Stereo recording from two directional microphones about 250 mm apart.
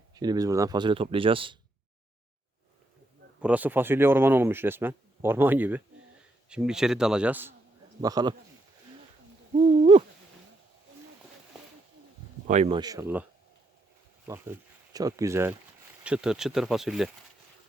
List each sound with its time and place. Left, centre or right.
0.1 s speech: centre
3.4 s speech: centre
9.6 s owl: right
12.5 s speech: right; by 13.2 s centre
14.3 s speech: centre